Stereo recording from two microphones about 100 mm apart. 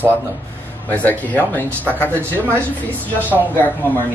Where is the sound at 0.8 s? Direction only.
20° left (ahead or behind).